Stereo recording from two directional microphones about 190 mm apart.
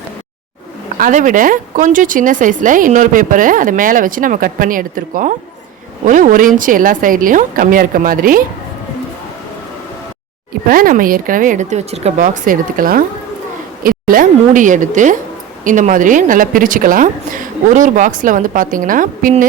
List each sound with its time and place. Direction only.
0.9 s speech: 45° right (ahead or behind)
10.7 s speech: 50° right (ahead or behind)